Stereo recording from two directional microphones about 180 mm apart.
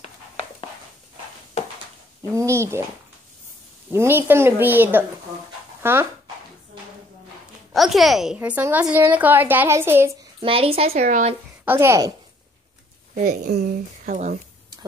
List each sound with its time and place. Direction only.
2.3 s a woman's voice: 15° right (ahead or behind)
3.9 s a woman's voice: 15° right (ahead or behind)
5.8 s dog: 15° right (ahead or behind)
7.7 s a woman's voice: centre (ahead or behind)
10.4 s a woman's voice: 30° right (ahead or behind)
11.1 s speech: 45° right (ahead or behind)
11.6 s a woman's voice: 10° right (ahead or behind)
13.1 s a woman's voice: 55° right (ahead or behind)
13.6 s speech: 50° right (ahead or behind)